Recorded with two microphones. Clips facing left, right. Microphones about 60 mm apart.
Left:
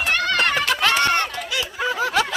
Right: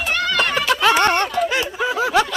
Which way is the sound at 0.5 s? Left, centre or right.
Centre.